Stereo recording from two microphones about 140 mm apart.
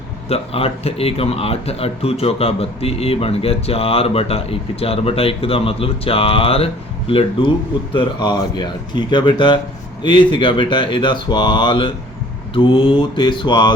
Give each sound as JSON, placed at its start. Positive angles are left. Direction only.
{"t": 0.3, "sound": "speech", "side_deg": 45}